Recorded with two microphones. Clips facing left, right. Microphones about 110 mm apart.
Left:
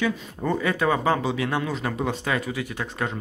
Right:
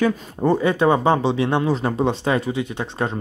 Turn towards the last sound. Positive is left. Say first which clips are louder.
# right 4 dB
turn(degrees=-25)  # may be behind; listen again after turning